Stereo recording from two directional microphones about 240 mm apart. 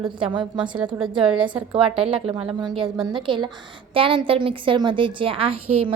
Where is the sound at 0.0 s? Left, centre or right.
Centre.